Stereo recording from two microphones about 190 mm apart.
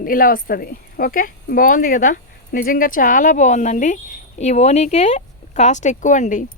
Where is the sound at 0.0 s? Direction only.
50° left (ahead or behind).